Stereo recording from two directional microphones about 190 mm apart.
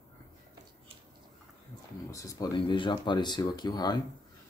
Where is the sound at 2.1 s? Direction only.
20° left (ahead or behind).